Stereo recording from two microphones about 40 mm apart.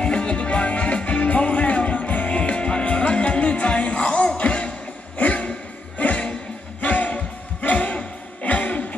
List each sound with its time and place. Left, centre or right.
0.0 s music: left
5.1 s a sound: left
6.8 s music: left